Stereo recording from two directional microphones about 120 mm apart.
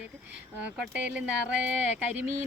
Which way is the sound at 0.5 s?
10° right (ahead or behind).